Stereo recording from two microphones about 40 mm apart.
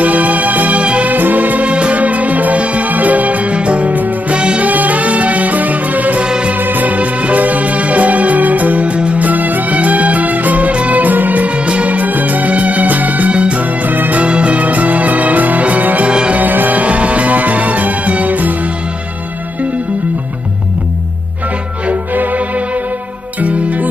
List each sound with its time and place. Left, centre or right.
0.0 s music: right
1.7 s music: right
3.9 s music: right
4.4 s music: right
4.6 s music: right
6.2 s music: right
6.5 s music: right
13.3 s music: right
13.8 s music: right
14.2 s music: right
16.1 s music: right
16.3 s music: right
22.1 s music: right
23.4 s music: right